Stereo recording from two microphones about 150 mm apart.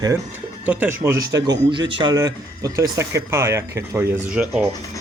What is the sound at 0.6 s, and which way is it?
A man's voice, 10° right (ahead or behind).